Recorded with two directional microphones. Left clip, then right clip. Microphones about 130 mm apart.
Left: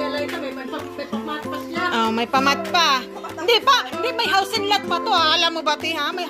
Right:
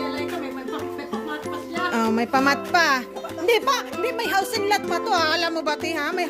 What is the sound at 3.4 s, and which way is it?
Speech, 65° right (ahead or behind).